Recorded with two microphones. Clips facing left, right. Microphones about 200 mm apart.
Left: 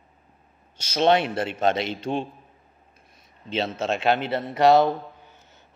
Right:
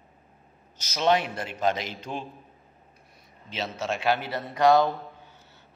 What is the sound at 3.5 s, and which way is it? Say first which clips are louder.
A man's voice: left 5 dB; 25° left (ahead or behind).